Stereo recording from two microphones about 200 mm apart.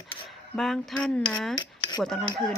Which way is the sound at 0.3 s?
Centre (ahead or behind).